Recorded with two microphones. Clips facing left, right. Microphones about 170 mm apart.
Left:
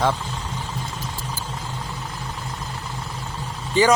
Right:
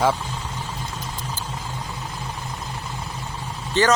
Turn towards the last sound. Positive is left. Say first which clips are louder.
# left 2 dB
turn(degrees=10)  # may be behind; listen again after turning